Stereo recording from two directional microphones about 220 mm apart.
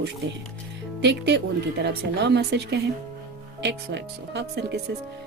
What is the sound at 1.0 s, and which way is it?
Speech, 50° right (ahead or behind).